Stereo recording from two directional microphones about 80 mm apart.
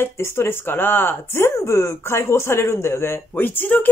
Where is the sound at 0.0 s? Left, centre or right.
Left.